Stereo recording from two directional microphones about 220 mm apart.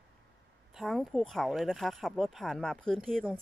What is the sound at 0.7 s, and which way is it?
Speech, centre (ahead or behind).